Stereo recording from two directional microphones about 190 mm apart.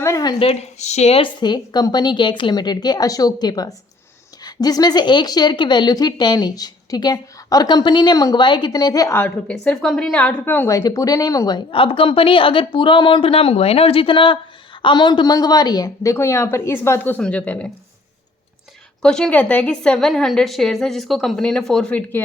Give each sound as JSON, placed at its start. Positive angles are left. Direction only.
{"t": 0.0, "sound": "speech", "side_deg": 20}
{"t": 19.0, "sound": "a woman's voice", "side_deg": 5}